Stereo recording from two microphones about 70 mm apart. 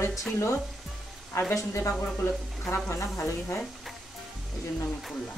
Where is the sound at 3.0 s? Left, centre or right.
Left.